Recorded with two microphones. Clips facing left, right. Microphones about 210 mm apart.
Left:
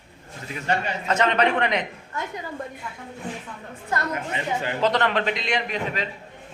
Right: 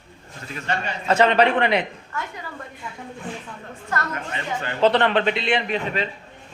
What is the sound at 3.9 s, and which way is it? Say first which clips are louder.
Speech: left 1 dB; 15° left (ahead or behind).